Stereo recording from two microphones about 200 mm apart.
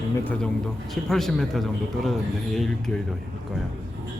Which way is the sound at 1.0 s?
Centre (ahead or behind).